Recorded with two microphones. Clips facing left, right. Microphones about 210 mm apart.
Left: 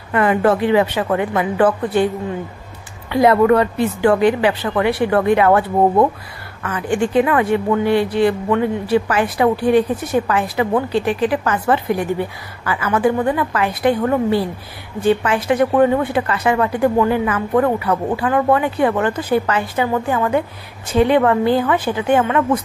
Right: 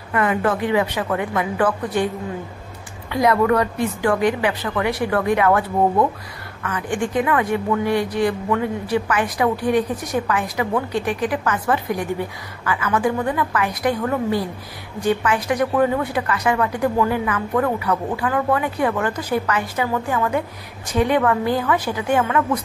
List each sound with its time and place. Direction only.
0.1 s speech: 30° left (ahead or behind)
3.1 s speech: 30° left (ahead or behind)